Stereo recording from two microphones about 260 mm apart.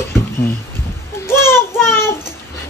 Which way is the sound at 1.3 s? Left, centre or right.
Centre.